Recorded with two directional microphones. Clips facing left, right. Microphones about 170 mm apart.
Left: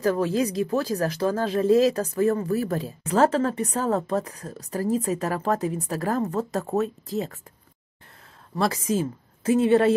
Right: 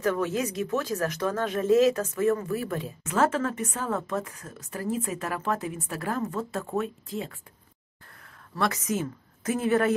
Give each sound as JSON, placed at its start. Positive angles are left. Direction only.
{"t": 0.0, "sound": "speech", "side_deg": 35}
{"t": 8.5, "sound": "a woman's voice", "side_deg": 30}